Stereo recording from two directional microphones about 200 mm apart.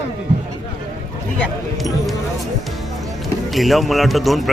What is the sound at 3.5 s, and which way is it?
Speech, centre (ahead or behind).